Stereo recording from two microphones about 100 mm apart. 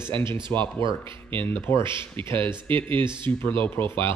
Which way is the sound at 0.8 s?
60° right (ahead or behind).